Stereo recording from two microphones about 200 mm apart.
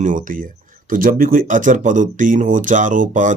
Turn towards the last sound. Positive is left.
turn(degrees=-40)  # may be behind; listen again after turning